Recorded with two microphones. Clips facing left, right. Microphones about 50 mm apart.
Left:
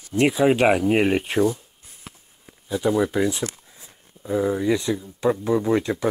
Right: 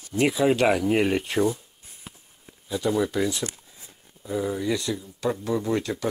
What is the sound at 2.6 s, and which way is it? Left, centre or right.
Speech, centre.